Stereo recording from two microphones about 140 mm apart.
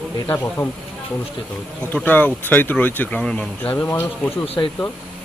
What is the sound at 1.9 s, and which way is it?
Speech, 10° left (ahead or behind).